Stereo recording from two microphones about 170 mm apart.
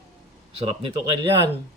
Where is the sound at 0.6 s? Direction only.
35° right (ahead or behind).